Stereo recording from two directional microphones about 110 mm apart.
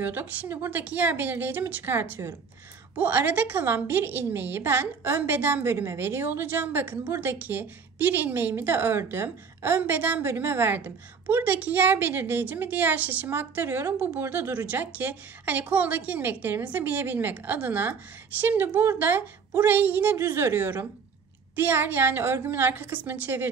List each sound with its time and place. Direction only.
0.0 s a woman's voice: 15° right (ahead or behind)